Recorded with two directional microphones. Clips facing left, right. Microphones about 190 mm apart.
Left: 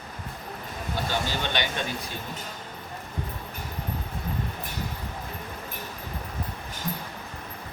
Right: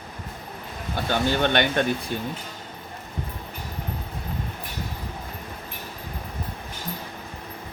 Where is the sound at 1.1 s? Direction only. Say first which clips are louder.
Right 9 dB; 55° right (ahead or behind).